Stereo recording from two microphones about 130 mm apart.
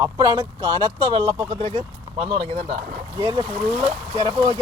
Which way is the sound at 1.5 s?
55° right (ahead or behind).